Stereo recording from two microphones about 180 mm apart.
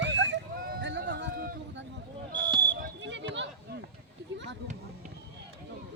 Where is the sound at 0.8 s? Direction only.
75° right (ahead or behind).